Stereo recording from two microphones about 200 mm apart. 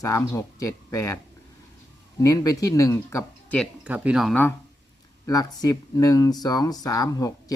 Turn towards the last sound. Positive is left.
turn(degrees=15)  # may be behind; listen again after turning